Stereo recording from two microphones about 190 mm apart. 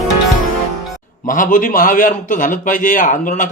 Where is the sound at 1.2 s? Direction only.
45° left (ahead or behind).